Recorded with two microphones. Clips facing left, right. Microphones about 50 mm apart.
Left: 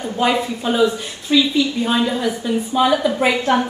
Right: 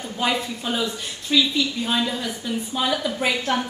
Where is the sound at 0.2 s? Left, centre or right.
Centre.